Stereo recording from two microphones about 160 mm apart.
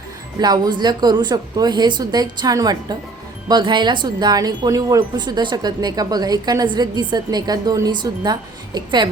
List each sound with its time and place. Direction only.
0.3 s speech: 25° right (ahead or behind)